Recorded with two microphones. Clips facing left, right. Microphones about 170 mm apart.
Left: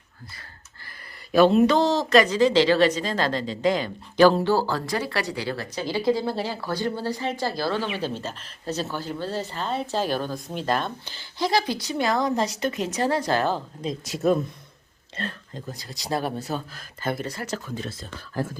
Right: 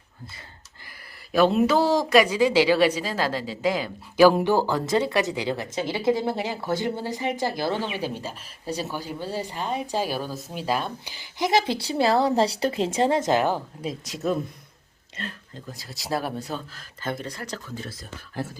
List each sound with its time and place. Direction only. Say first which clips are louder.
1.3 s speech: left 2 dB; centre (ahead or behind)
15.8 s speech: left 1 dB; 5° right (ahead or behind)
17.0 s speech: left 3 dB; 10° left (ahead or behind)